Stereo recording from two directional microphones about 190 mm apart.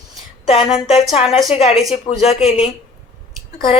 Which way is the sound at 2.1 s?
25° left (ahead or behind).